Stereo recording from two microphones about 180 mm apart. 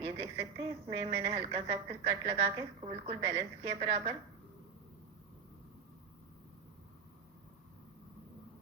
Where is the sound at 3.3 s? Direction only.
30° right (ahead or behind).